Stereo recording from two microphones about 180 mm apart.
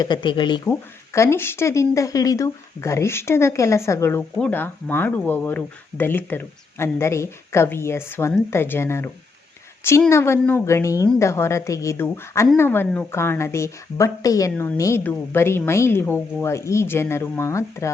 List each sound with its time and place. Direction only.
0.0 s speech: 25° left (ahead or behind)
0.7 s speech: 15° left (ahead or behind)
10.1 s speech: 15° left (ahead or behind)
14.5 s a woman's voice: 5° left (ahead or behind)